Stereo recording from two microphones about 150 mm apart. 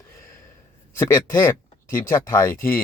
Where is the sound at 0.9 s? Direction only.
20° left (ahead or behind).